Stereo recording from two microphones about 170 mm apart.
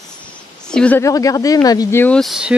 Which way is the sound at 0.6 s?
5° left (ahead or behind).